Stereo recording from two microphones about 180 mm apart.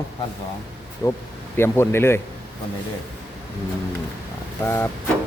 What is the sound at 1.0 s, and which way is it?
Speech, 15° left (ahead or behind).